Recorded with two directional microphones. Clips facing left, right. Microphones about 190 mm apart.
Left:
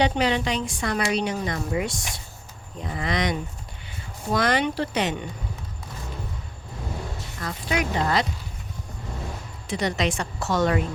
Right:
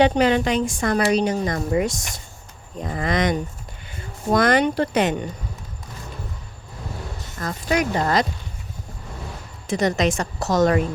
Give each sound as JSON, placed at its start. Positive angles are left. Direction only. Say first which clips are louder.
{"t": 0.0, "sound": "a woman's voice", "louder": "right 5 dB", "side_deg": -50}
{"t": 7.3, "sound": "speech", "louder": "right 5 dB", "side_deg": -45}
{"t": 9.6, "sound": "a woman's voice", "louder": "right 5 dB", "side_deg": -45}